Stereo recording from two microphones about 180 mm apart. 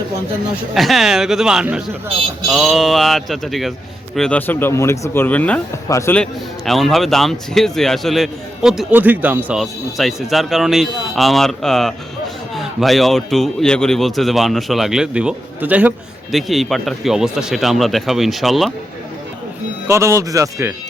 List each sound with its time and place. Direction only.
0.7 s a man's voice: centre (ahead or behind)
6.7 s a man's voice: centre (ahead or behind)
19.9 s speech: 15° right (ahead or behind)